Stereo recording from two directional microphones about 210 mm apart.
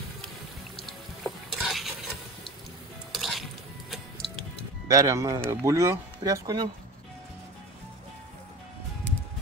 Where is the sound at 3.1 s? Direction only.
Centre (ahead or behind).